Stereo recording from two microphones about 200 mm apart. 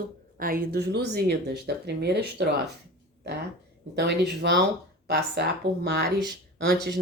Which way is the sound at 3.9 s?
55° right (ahead or behind).